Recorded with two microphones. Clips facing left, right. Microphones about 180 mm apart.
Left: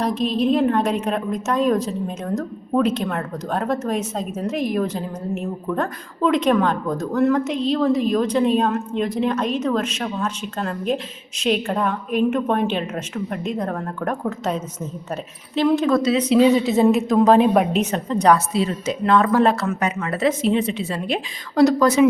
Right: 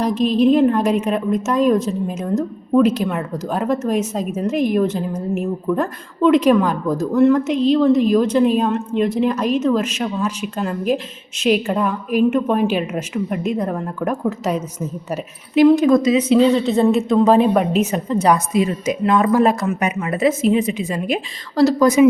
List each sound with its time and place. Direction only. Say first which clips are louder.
0.2 s a woman's voice: right 6 dB; centre (ahead or behind)
16.4 s a woman's voice: right 1 dB; 5° left (ahead or behind); by 22.0 s 10° right (ahead or behind)